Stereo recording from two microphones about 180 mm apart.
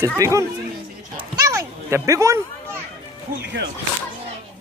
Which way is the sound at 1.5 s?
15° right (ahead or behind).